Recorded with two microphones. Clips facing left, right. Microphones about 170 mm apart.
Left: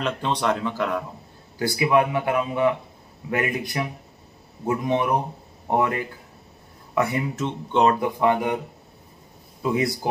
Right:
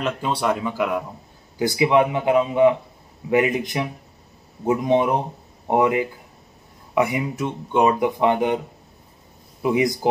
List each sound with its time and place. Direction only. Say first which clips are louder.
0.0 s speech: right 1 dB; 5° right (ahead or behind)
9.6 s a man's voice: right 3 dB; 20° right (ahead or behind)